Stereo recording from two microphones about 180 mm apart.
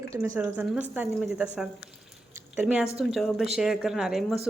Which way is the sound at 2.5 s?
5° right (ahead or behind).